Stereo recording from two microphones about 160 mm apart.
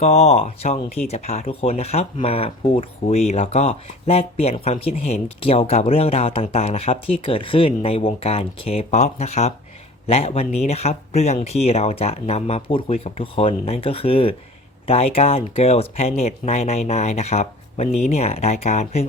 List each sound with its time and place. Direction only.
0.0 s speech: 40° left (ahead or behind)